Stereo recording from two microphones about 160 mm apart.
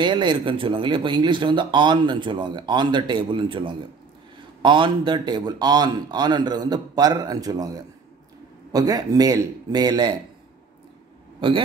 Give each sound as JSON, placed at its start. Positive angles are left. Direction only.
{"t": 0.0, "sound": "speech", "side_deg": -30}